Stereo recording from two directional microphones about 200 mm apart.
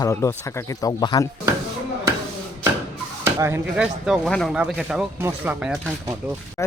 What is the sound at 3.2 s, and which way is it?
Speech, 10° right (ahead or behind).